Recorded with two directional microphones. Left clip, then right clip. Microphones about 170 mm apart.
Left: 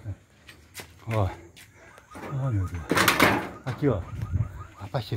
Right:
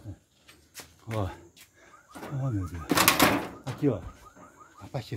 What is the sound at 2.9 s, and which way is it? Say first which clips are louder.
Speech: left 2 dB; 70° right (ahead or behind).